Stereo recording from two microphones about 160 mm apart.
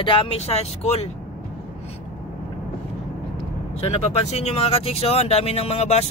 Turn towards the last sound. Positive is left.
turn(degrees=40)  # may be behind; listen again after turning